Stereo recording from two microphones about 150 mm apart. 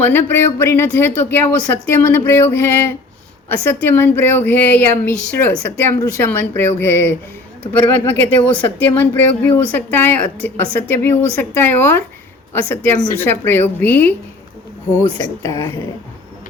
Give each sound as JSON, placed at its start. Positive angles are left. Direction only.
{"t": 0.0, "sound": "a woman's voice", "side_deg": 15}
{"t": 15.2, "sound": "speech", "side_deg": 25}